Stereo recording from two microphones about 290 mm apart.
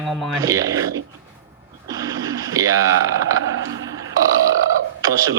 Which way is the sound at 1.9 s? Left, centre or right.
Centre.